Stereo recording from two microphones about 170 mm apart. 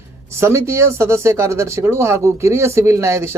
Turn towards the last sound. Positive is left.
turn(degrees=-15)  # may be behind; listen again after turning